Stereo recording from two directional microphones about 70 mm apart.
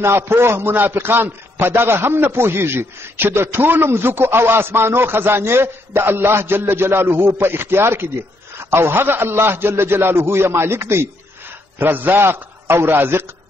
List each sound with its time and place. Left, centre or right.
0.0 s a man's voice: right